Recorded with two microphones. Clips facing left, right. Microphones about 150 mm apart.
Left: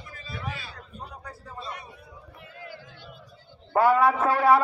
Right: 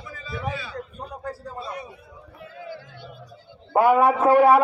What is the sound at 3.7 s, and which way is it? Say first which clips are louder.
Speech: right 3 dB; 20° right (ahead or behind).